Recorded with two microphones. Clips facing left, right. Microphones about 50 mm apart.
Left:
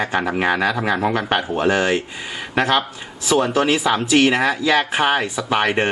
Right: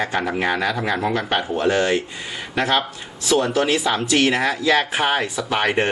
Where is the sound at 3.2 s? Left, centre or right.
Centre.